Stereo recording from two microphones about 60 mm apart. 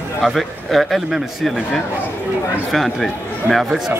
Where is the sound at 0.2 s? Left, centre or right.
Centre.